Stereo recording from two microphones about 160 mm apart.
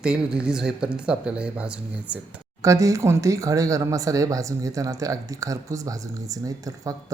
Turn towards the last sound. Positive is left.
turn(degrees=-20)  # may be behind; listen again after turning